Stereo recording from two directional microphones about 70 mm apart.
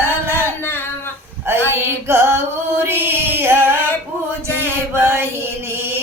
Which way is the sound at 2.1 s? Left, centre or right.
Right.